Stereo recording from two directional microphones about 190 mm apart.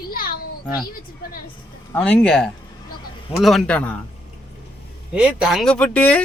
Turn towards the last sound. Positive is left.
turn(degrees=5)  # may be behind; listen again after turning